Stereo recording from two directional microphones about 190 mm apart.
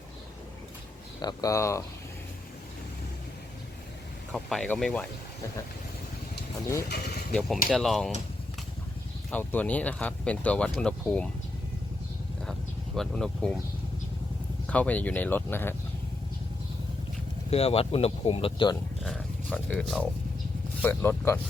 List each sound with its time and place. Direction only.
1.2 s speech: 20° left (ahead or behind)
4.3 s speech: centre (ahead or behind)
6.8 s speech: 60° left (ahead or behind)
7.3 s speech: centre (ahead or behind)
9.3 s speech: 10° left (ahead or behind)
13.0 s speech: centre (ahead or behind)
14.7 s speech: 5° left (ahead or behind)
17.5 s speech: 35° left (ahead or behind)
19.0 s a sound: 5° left (ahead or behind)
20.8 s speech: 10° left (ahead or behind)